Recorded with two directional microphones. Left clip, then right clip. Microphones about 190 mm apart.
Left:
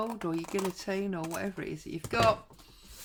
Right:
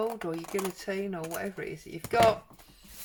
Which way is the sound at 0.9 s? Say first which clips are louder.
Even; 40° left (ahead or behind).